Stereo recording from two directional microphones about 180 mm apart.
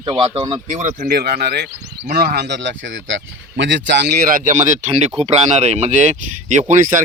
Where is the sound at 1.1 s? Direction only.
60° right (ahead or behind); by 4.1 s 80° right.